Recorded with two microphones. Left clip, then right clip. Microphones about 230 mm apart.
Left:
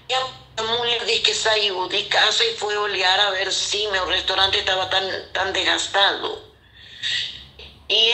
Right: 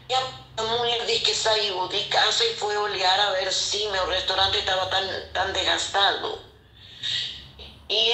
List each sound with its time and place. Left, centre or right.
0.1 s a woman's voice: left